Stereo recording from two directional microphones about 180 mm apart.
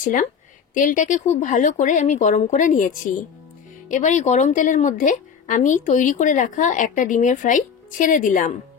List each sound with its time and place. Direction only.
0.0 s a woman's voice: 45° left (ahead or behind)